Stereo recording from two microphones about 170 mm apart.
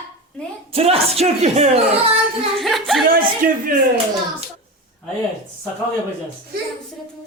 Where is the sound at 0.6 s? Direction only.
35° right (ahead or behind).